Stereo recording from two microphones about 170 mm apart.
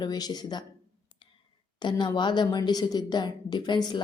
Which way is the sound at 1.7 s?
25° left (ahead or behind).